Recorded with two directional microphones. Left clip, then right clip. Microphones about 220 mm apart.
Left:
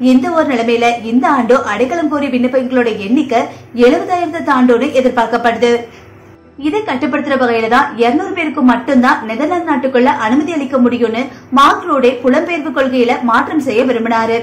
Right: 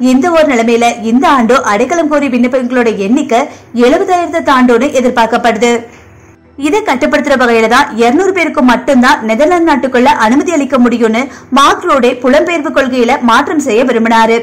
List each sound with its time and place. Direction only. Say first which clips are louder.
0.0 s a woman's voice: right 4 dB; 45° right (ahead or behind)